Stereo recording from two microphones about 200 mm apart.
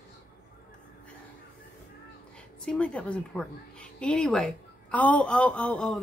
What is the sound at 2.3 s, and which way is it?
A woman's voice, 5° left (ahead or behind).